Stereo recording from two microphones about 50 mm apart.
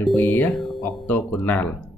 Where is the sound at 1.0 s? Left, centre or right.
Left.